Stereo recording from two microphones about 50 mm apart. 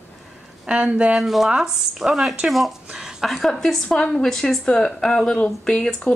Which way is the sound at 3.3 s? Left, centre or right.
Centre.